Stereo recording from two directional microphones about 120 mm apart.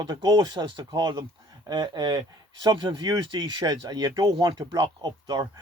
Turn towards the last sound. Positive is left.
turn(degrees=-35)  # may be behind; listen again after turning